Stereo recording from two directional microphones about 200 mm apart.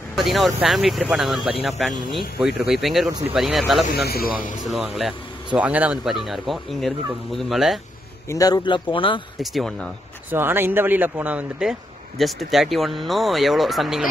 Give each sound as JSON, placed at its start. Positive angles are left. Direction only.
{"t": 0.1, "sound": "speech", "side_deg": 0}
{"t": 3.9, "sound": "a man's voice", "side_deg": 50}
{"t": 4.6, "sound": "speech", "side_deg": 0}
{"t": 8.3, "sound": "speech", "side_deg": 15}
{"t": 9.4, "sound": "speech", "side_deg": 0}
{"t": 10.3, "sound": "speech", "side_deg": -10}